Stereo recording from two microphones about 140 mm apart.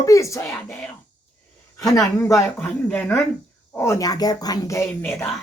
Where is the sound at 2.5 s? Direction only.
10° left (ahead or behind).